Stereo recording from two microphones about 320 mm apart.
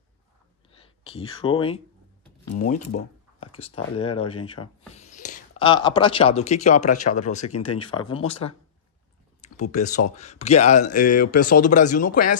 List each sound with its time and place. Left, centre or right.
0.7 s speech: centre
9.6 s speech: left